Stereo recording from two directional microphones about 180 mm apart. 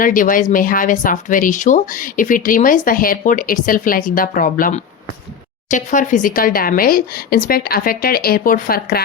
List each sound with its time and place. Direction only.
0.0 s speech: 50° left (ahead or behind)